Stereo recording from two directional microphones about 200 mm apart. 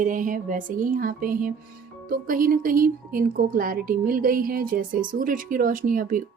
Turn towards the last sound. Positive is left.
turn(degrees=-40)  # may be behind; listen again after turning